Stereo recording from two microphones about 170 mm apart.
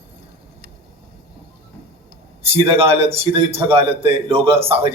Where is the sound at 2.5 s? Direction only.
35° right (ahead or behind).